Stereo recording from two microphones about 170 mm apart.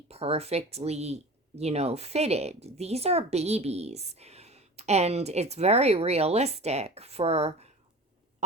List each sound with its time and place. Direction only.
0.1 s speech: 35° right (ahead or behind)